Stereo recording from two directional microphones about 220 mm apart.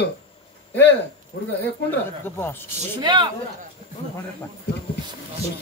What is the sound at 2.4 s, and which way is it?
Speech, 10° left (ahead or behind).